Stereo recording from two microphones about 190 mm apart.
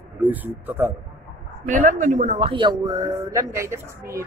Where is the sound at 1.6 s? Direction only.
40° right (ahead or behind); by 4.2 s 15° right (ahead or behind).